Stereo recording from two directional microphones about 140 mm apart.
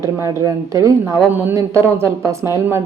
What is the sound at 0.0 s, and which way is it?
A woman's voice, 20° right (ahead or behind).